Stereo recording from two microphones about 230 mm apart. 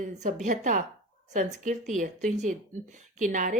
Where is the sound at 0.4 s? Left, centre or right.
Right.